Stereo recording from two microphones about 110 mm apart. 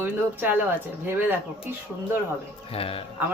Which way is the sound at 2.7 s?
60° left (ahead or behind).